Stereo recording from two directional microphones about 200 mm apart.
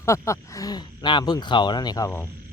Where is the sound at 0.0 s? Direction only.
15° left (ahead or behind).